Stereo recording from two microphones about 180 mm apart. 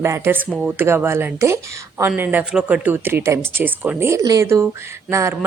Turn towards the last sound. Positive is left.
turn(degrees=-15)  # may be behind; listen again after turning